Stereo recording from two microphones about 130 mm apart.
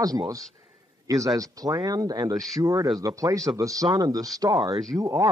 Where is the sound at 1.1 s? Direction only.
25° right (ahead or behind).